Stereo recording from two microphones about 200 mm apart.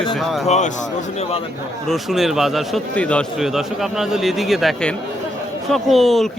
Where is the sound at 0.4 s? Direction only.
35° left (ahead or behind).